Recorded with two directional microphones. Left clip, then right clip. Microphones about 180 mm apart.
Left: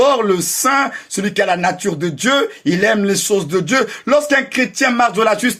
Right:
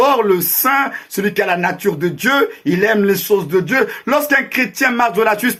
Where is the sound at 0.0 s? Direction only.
25° left (ahead or behind).